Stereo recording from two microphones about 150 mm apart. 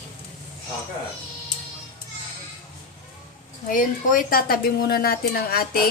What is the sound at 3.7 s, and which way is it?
A woman's voice, 65° left (ahead or behind).